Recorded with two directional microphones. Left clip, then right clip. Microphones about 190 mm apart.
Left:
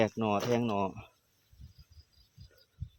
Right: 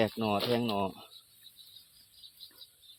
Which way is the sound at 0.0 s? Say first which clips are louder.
Even; 10° left (ahead or behind).